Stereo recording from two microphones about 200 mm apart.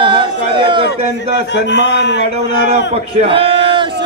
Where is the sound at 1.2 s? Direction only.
60° left (ahead or behind).